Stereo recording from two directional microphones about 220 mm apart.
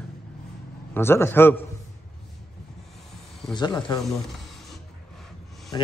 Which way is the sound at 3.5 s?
20° left (ahead or behind).